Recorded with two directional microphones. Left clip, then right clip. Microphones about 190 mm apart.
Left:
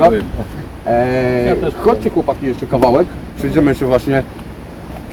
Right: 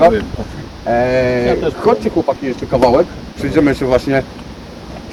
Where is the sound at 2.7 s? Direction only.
15° right (ahead or behind).